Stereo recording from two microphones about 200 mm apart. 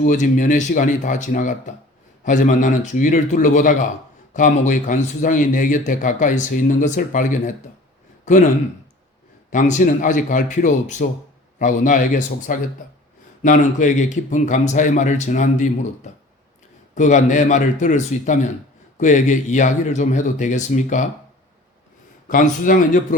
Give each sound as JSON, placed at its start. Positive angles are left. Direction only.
{"t": 0.0, "sound": "speech", "side_deg": 40}
{"t": 9.5, "sound": "speech", "side_deg": 40}
{"t": 16.9, "sound": "speech", "side_deg": 40}
{"t": 22.3, "sound": "speech", "side_deg": 40}